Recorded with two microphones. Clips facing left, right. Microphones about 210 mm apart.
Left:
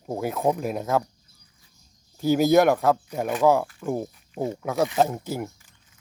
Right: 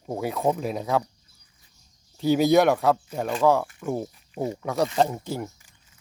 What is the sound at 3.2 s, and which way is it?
Speech, 10° left (ahead or behind).